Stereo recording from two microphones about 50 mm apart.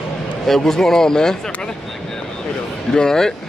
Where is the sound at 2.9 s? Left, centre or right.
Centre.